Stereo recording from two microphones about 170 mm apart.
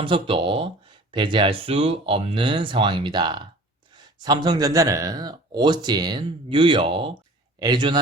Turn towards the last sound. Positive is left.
turn(degrees=-25)  # may be behind; listen again after turning